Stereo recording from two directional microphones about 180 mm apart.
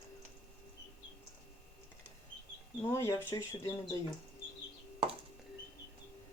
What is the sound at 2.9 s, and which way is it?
Speech, 15° left (ahead or behind).